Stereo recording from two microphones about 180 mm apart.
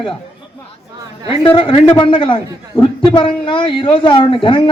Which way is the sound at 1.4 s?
30° left (ahead or behind).